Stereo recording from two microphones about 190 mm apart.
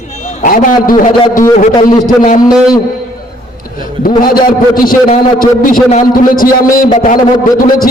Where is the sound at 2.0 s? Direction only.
45° left (ahead or behind).